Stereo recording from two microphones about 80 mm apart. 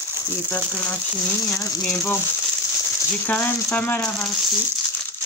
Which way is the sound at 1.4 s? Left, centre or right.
Left.